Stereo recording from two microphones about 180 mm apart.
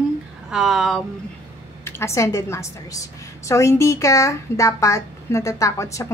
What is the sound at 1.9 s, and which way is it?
A woman's voice, 15° left (ahead or behind).